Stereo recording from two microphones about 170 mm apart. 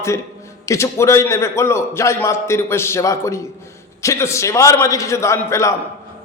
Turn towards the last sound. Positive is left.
turn(degrees=15)  # may be behind; listen again after turning